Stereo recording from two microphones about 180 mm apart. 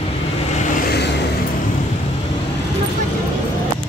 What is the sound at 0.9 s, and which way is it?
Vehicle, 70° left (ahead or behind).